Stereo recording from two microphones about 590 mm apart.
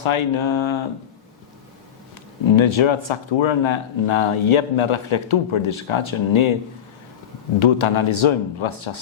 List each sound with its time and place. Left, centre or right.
0.0 s speech: left
2.6 s speech: left
7.6 s speech: left